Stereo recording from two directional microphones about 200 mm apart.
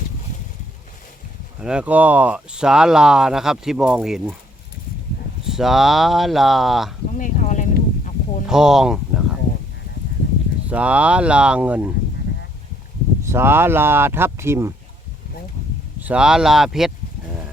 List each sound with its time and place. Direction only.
1.6 s speech: 5° right (ahead or behind)
5.5 s speech: centre (ahead or behind)
7.2 s a sound: 40° left (ahead or behind)
8.4 s speech: 5° right (ahead or behind)
10.7 s speech: 5° right (ahead or behind)
13.2 s speech: 10° right (ahead or behind)
16.0 s speech: 5° right (ahead or behind)